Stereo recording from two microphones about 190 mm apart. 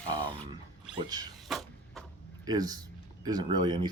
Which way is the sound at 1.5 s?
Centre (ahead or behind).